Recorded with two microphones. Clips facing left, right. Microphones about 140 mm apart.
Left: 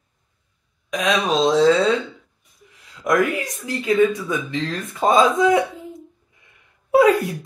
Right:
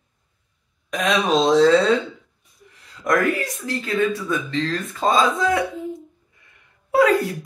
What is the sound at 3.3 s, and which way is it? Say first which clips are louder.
Speech: even; 15° left (ahead or behind).